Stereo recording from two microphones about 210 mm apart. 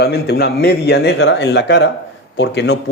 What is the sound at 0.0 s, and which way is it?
Speech, 50° left (ahead or behind).